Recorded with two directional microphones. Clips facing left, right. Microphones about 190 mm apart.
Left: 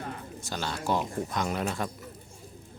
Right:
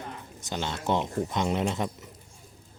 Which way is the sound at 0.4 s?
20° right (ahead or behind).